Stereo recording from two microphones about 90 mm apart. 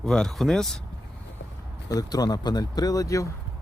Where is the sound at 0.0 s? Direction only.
5° left (ahead or behind).